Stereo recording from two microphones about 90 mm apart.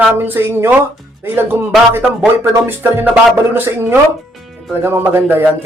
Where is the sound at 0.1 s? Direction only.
25° right (ahead or behind).